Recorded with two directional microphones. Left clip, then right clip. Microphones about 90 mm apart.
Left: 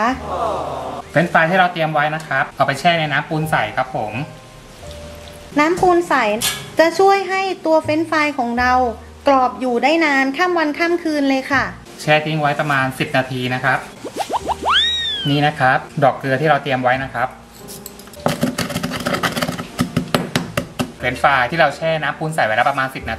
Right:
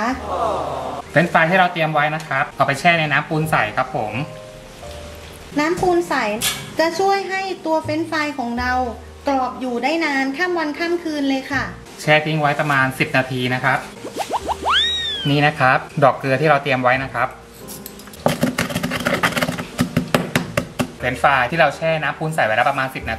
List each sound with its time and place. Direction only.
0.2 s gasp: centre (ahead or behind)
0.8 s a sound: 5° left (ahead or behind)
1.2 s speech: 10° left (ahead or behind)
5.6 s a woman's voice: 20° left (ahead or behind)
12.2 s speech: 10° left (ahead or behind)
14.3 s speech: centre (ahead or behind)
18.2 s a sound: 5° left (ahead or behind)